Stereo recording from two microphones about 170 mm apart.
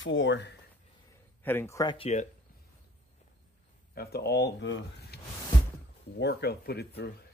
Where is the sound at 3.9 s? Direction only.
65° left (ahead or behind).